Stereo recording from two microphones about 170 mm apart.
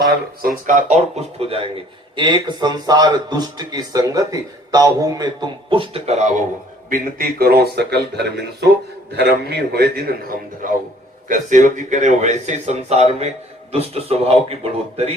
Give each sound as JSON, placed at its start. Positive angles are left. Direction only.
{"t": 0.4, "sound": "a man's voice", "side_deg": -50}
{"t": 6.9, "sound": "speech", "side_deg": -60}
{"t": 11.3, "sound": "a man's voice", "side_deg": -45}